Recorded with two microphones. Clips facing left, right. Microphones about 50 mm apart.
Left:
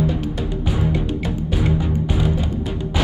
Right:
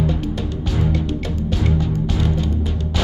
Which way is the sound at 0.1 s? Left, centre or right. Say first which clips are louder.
Even; centre.